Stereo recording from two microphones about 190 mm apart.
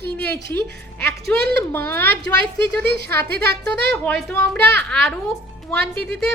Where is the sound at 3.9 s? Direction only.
5° left (ahead or behind).